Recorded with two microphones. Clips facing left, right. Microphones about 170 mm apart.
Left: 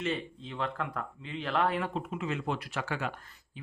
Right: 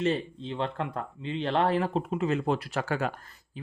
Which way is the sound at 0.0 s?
35° right (ahead or behind).